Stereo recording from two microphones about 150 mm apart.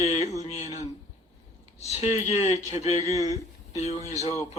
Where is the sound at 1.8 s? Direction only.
45° left (ahead or behind).